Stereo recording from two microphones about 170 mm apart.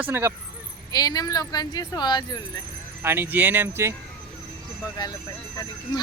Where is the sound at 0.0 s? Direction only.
15° right (ahead or behind).